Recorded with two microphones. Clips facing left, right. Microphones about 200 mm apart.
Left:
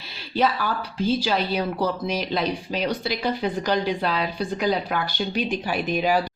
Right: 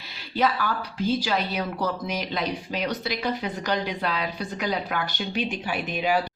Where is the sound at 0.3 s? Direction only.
30° left (ahead or behind).